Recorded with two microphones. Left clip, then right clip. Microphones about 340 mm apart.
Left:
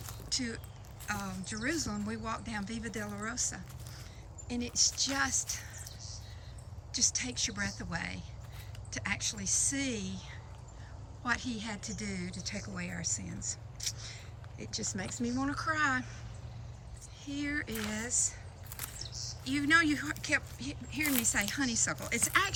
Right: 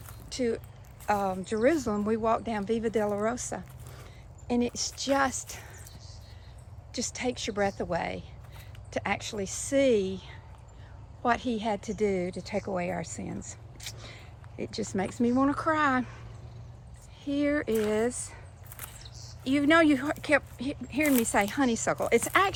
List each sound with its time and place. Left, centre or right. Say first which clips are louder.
0.0 s a sound: right 6 dB; centre
1.0 s speech: right 11 dB; centre
6.9 s speech: right 1 dB; centre
17.2 s speech: right 9 dB; centre
19.5 s speech: right 5 dB; centre